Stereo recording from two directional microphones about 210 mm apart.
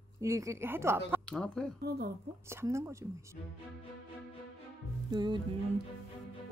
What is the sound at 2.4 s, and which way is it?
Speech, 15° right (ahead or behind).